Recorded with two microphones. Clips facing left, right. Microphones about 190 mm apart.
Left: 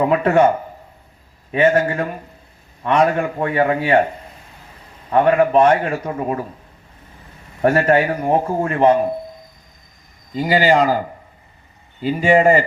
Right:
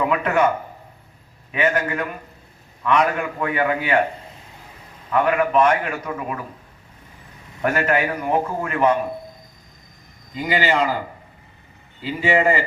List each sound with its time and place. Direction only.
0.0 s a man's voice: 30° left (ahead or behind)
1.5 s a man's voice: 30° left (ahead or behind)
5.1 s a man's voice: 30° left (ahead or behind)
7.6 s a man's voice: 35° left (ahead or behind)
10.3 s a man's voice: 40° left (ahead or behind)
12.0 s speech: 45° left (ahead or behind)